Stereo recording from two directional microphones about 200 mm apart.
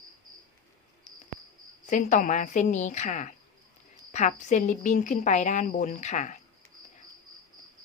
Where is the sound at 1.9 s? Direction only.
40° left (ahead or behind).